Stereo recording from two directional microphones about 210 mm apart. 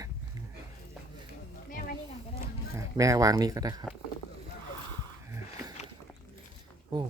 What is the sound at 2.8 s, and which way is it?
Speech, 15° right (ahead or behind).